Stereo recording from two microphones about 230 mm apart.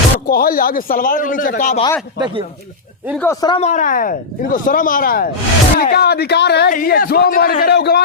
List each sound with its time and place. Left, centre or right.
0.3 s speech: left
2.1 s speech: centre
3.2 s a man's voice: centre
3.5 s speech: left